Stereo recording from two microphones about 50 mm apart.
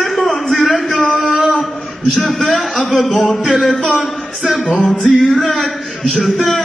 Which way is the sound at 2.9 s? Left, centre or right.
Centre.